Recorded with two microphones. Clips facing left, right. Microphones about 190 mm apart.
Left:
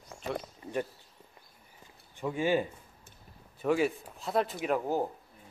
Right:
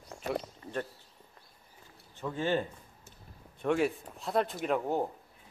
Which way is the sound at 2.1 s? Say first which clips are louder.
Left 2 dB; 10° left (ahead or behind).